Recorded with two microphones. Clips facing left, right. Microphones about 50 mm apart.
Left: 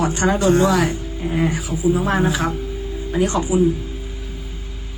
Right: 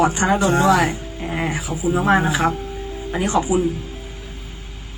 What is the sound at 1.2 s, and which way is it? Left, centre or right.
Speech, centre.